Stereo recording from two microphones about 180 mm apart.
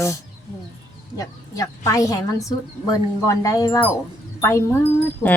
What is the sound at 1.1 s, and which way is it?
Speech, 20° left (ahead or behind).